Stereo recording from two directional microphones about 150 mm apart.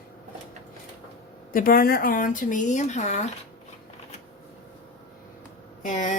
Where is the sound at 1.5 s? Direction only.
75° left (ahead or behind); by 3.2 s 50° left (ahead or behind).